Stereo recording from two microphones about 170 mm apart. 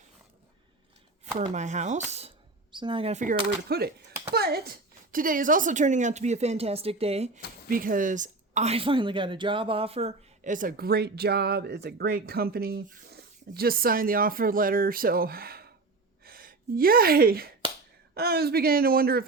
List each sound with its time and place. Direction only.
1.2 s speech: 45° right (ahead or behind)
2.7 s speech: 30° right (ahead or behind)
3.7 s speech: 65° right (ahead or behind); by 7.4 s 40° right (ahead or behind)
7.7 s a woman's voice: 55° right (ahead or behind)